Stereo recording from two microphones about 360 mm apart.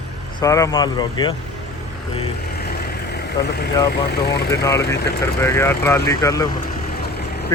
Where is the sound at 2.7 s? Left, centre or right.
Left.